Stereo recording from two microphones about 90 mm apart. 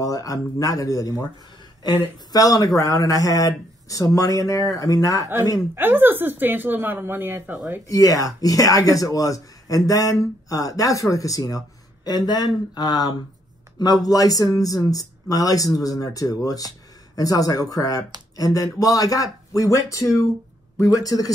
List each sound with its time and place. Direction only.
0.0 s speech: 40° left (ahead or behind)
2.3 s speech: 40° left (ahead or behind)
5.8 s a woman's voice: 25° right (ahead or behind)
7.9 s speech: 40° left (ahead or behind)